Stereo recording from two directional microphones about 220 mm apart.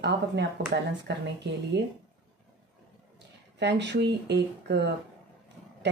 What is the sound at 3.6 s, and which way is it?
Speech, 50° right (ahead or behind).